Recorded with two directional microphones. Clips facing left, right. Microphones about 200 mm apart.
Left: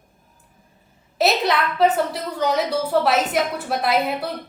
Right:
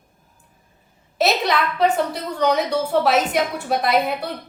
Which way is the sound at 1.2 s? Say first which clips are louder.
Even; centre (ahead or behind).